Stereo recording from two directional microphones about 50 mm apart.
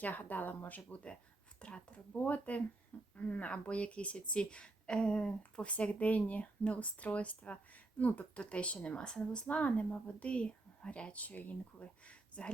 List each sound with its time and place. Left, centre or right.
0.0 s speech: left
2.1 s speech: left; by 9.4 s centre
9.5 s speech: left